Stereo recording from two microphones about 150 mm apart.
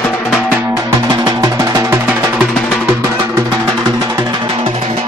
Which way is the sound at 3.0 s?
20° right (ahead or behind).